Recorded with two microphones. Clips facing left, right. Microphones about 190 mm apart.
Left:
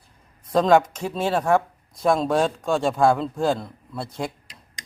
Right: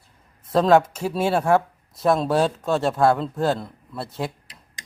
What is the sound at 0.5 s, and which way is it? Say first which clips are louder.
Speech: right 1 dB; 5° right (ahead or behind).